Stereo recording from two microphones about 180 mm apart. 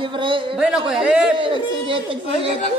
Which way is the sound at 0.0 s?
30° right (ahead or behind).